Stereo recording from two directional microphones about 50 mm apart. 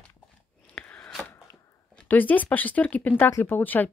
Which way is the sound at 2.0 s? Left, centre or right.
Left.